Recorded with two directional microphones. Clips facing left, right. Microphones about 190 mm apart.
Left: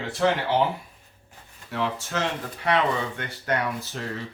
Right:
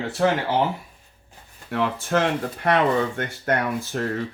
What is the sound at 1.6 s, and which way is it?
Speech, 55° right (ahead or behind).